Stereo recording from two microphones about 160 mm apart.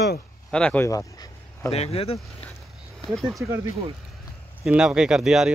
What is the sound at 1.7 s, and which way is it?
Speech, 40° left (ahead or behind).